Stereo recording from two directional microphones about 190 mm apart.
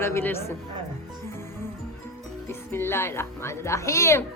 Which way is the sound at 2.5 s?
10° left (ahead or behind).